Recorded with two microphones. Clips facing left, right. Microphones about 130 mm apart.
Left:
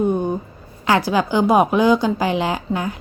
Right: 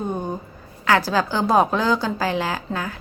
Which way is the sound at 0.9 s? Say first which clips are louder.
Left 2 dB; 15° left (ahead or behind).